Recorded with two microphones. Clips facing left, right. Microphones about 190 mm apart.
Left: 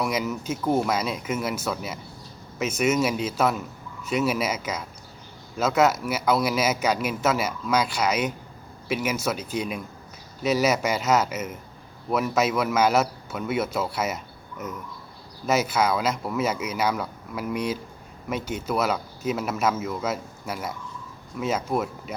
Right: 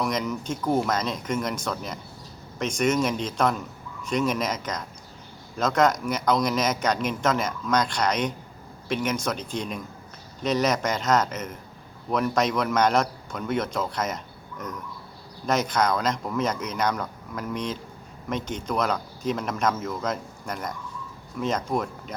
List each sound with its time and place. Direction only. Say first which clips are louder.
0.0 s a man's voice: even; 5° left (ahead or behind)
15.4 s a man's voice: left 1 dB; 5° left (ahead or behind)